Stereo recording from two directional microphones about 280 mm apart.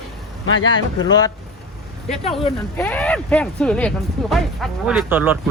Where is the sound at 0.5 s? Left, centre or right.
Left.